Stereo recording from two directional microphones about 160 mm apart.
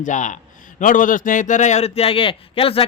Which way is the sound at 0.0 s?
50° left (ahead or behind).